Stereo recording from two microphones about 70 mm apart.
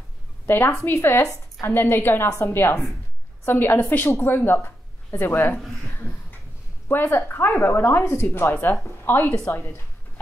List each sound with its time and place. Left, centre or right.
0.7 s a woman's voice: left
2.2 s a woman's voice: left
6.9 s a woman's voice: left